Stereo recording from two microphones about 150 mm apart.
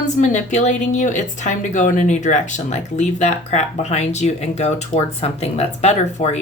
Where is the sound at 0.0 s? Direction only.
50° left (ahead or behind).